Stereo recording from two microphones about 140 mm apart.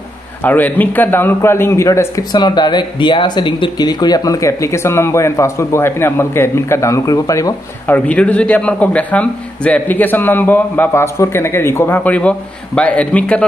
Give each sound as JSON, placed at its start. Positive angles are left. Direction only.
{"t": 0.4, "sound": "a man's voice", "side_deg": 10}
{"t": 7.8, "sound": "a man's voice", "side_deg": 10}